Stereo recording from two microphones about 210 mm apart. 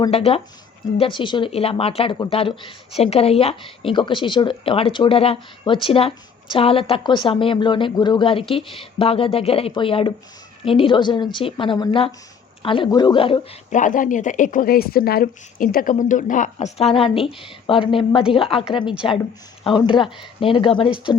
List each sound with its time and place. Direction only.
0.0 s speech: 30° left (ahead or behind)